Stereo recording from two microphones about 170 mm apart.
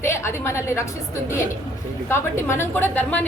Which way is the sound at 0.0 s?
15° left (ahead or behind).